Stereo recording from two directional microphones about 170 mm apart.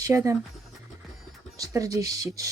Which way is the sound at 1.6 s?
20° right (ahead or behind).